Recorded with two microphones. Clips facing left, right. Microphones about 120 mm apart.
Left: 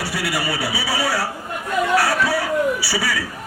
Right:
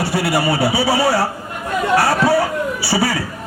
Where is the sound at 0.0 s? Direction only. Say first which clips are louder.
Right 7 dB; 25° right (ahead or behind).